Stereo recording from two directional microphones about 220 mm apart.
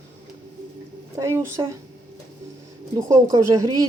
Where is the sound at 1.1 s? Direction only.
15° right (ahead or behind).